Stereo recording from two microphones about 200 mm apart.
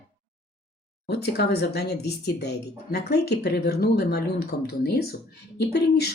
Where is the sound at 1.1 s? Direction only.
55° left (ahead or behind).